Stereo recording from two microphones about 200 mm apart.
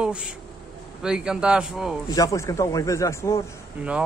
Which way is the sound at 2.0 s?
15° left (ahead or behind).